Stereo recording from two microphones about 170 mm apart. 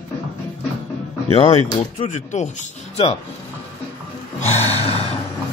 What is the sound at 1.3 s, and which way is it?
Speech, 35° left (ahead or behind).